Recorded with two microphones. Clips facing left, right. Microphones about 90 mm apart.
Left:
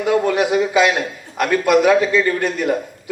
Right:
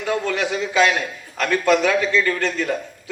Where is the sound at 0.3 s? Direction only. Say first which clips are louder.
Left 6 dB; 25° left (ahead or behind).